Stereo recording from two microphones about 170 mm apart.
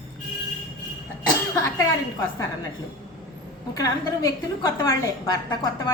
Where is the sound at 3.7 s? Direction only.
20° left (ahead or behind).